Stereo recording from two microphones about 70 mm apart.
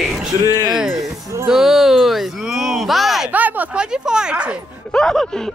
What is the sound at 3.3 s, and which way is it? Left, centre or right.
Speech, right.